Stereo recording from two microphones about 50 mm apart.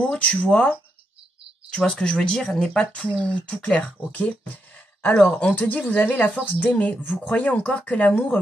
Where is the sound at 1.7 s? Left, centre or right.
Centre.